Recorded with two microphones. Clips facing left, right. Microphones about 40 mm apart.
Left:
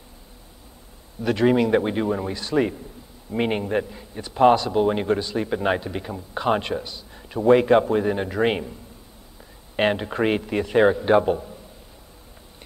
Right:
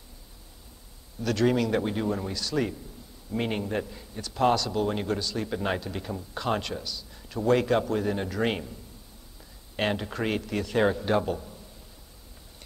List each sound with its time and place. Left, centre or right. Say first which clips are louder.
1.2 s a man's voice: left 5 dB; left
9.8 s a man's voice: left 7 dB; left